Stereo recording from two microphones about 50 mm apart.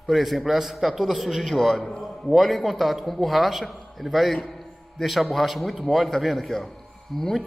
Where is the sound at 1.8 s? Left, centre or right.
Centre.